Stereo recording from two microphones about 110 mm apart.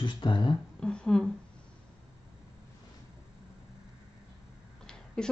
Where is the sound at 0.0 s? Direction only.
45° left (ahead or behind).